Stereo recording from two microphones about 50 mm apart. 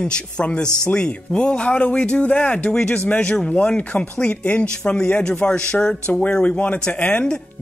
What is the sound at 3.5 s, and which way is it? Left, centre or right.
A man's voice, left.